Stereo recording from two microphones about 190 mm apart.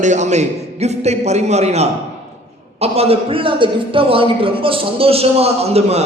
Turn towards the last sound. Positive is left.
turn(degrees=-35)  # may be behind; listen again after turning